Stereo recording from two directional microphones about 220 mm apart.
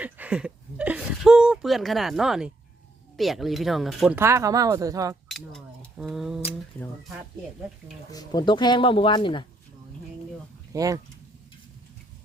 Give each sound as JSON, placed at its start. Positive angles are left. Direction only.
{"t": 0.0, "sound": "a sound", "side_deg": -5}
{"t": 3.2, "sound": "speech", "side_deg": 0}
{"t": 4.2, "sound": "speech", "side_deg": -15}
{"t": 5.3, "sound": "a sound", "side_deg": 0}
{"t": 8.1, "sound": "speech", "side_deg": 15}
{"t": 10.7, "sound": "speech", "side_deg": -15}